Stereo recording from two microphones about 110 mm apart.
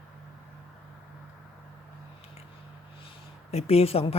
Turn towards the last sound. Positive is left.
turn(degrees=60)  # may be behind; listen again after turning